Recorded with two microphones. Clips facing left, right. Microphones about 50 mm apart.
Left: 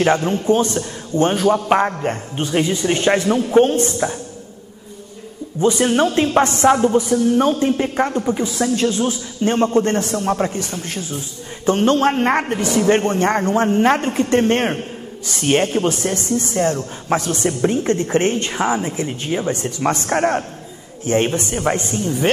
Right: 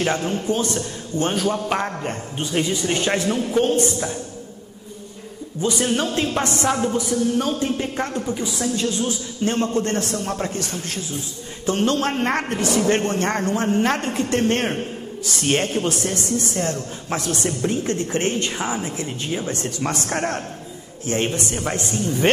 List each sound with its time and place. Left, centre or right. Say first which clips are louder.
0.0 s a man's voice: left 6 dB; left
5.6 s a man's voice: left 6 dB; left